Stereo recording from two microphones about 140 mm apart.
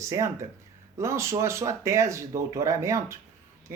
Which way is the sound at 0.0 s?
20° right (ahead or behind).